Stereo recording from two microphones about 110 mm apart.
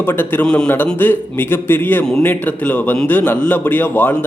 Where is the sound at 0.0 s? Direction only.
20° left (ahead or behind).